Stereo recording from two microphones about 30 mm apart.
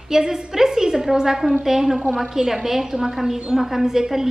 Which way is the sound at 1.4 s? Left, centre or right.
Centre.